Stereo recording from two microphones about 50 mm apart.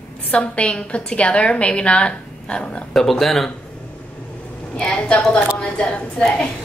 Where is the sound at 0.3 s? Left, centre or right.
Left.